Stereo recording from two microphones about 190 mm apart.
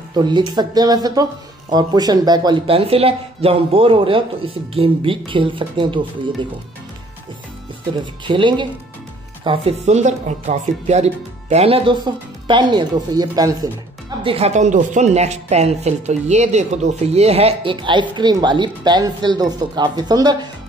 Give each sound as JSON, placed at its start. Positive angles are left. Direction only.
{"t": 0.1, "sound": "speech", "side_deg": -20}
{"t": 8.3, "sound": "speech", "side_deg": -25}
{"t": 14.2, "sound": "a woman's voice", "side_deg": -30}